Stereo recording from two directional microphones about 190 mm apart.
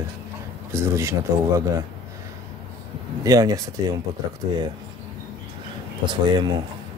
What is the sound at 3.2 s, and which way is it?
Speech, 20° right (ahead or behind).